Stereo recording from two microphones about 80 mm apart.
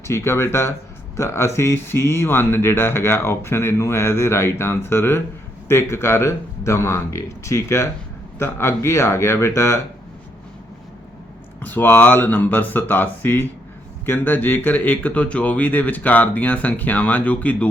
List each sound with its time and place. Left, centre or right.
0.1 s speech: left
11.6 s speech: left